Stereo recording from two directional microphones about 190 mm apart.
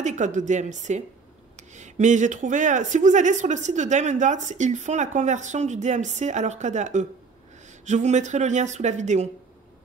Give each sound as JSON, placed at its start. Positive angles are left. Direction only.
{"t": 0.0, "sound": "speech", "side_deg": -40}